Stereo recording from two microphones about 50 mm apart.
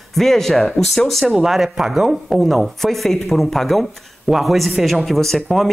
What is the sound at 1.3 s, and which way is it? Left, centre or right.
Speech, centre.